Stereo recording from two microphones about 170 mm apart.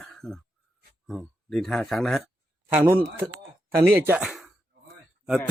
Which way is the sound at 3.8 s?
10° right (ahead or behind).